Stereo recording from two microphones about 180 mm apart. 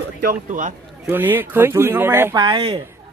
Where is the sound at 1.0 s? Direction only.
10° right (ahead or behind).